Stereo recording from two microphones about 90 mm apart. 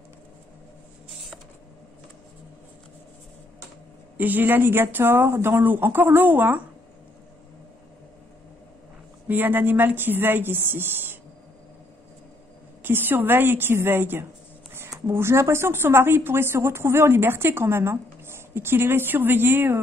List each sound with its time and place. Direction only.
4.2 s a woman's voice: 20° right (ahead or behind)
9.3 s a woman's voice: 20° right (ahead or behind)
12.8 s a woman's voice: 25° right (ahead or behind)